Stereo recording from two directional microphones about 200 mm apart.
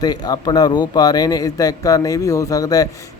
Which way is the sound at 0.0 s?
20° left (ahead or behind).